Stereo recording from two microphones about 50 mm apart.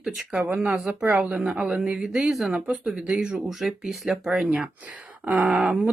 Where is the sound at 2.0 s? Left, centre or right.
Centre.